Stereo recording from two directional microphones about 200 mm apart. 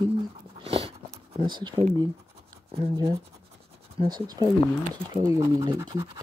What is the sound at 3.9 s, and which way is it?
Speech, 20° right (ahead or behind).